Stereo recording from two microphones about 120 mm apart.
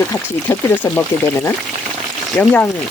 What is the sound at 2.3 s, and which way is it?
Speech, 15° left (ahead or behind).